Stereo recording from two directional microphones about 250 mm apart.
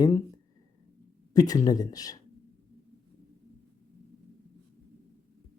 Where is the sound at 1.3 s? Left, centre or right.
Centre.